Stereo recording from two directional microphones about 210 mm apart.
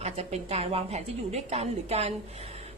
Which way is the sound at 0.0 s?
30° right (ahead or behind).